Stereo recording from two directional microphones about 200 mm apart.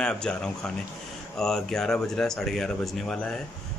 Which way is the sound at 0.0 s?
5° left (ahead or behind).